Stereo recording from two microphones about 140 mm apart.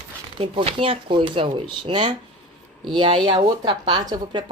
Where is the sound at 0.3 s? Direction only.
40° right (ahead or behind).